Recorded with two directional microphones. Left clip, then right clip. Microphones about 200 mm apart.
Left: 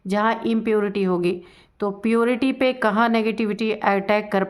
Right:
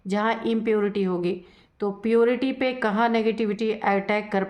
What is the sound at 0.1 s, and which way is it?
A woman's voice, 25° left (ahead or behind).